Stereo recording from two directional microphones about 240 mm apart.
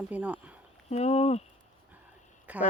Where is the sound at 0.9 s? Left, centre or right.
Left.